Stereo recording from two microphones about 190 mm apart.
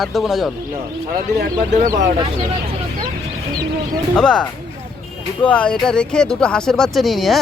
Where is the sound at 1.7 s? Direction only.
45° right (ahead or behind).